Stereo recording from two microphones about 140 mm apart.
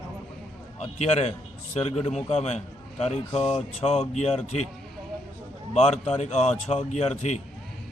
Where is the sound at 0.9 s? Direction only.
50° left (ahead or behind).